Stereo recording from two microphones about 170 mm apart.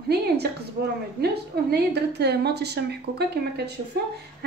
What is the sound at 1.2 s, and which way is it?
A woman's voice, 70° right (ahead or behind).